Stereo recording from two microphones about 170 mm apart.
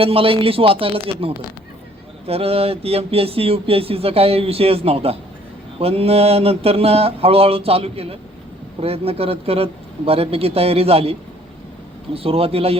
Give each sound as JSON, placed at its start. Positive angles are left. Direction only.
{"t": 0.0, "sound": "speech", "side_deg": -35}